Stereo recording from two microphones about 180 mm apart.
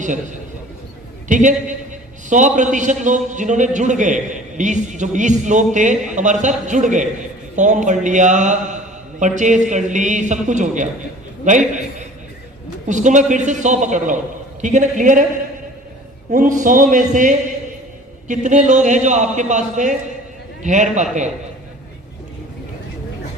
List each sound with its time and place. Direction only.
1.3 s a man's voice: 45° right (ahead or behind)
16.3 s a man's voice: 45° right (ahead or behind)